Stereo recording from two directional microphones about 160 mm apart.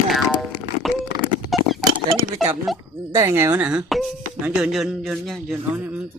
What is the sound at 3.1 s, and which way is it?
A man's voice, 15° right (ahead or behind).